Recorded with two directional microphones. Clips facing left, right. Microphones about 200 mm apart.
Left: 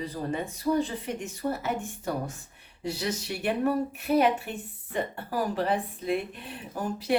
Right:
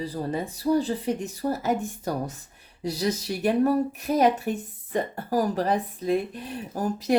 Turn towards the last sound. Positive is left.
turn(degrees=-40)  # may be behind; listen again after turning